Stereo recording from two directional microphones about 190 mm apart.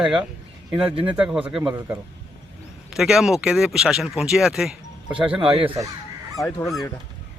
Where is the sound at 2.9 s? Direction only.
Centre (ahead or behind).